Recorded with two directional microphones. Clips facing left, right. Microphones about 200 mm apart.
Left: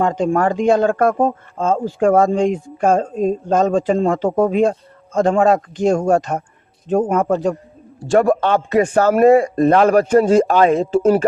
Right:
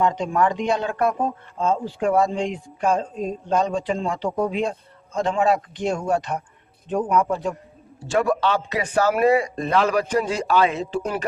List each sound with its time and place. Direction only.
0.0 s speech: 50° left (ahead or behind)